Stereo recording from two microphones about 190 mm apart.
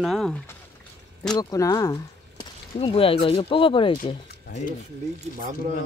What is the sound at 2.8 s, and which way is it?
Speech, 30° left (ahead or behind).